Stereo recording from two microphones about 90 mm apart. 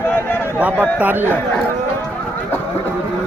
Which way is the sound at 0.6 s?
20° right (ahead or behind).